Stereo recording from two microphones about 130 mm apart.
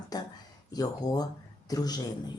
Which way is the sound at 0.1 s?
30° left (ahead or behind).